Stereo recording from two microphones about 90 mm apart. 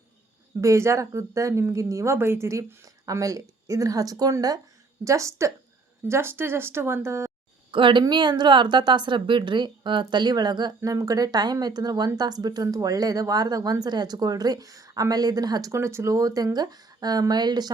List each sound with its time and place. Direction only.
0.6 s speech: 35° right (ahead or behind)
2.1 s speech: 25° right (ahead or behind); by 4.6 s 45° right (ahead or behind)
5.0 s speech: 35° right (ahead or behind)
7.7 s a woman's voice: 65° right (ahead or behind); by 15.7 s 45° right (ahead or behind)
15.7 s speech: 30° right (ahead or behind); by 17.7 s 50° right (ahead or behind)